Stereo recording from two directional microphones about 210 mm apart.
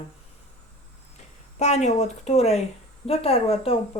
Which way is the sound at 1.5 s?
35° left (ahead or behind).